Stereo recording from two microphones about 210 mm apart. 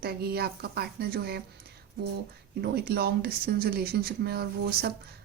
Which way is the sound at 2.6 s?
50° right (ahead or behind).